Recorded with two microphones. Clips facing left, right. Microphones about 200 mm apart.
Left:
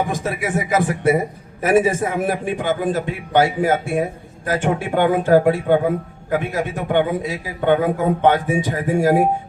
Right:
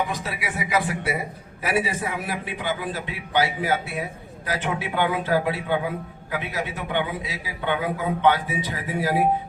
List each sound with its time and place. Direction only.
0.0 s a man's voice: 50° left (ahead or behind)